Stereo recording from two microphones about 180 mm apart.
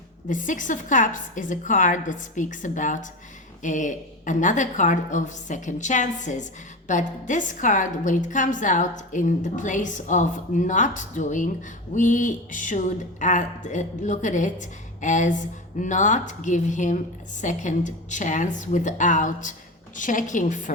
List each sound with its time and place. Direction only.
0.3 s a woman's voice: 45° left (ahead or behind)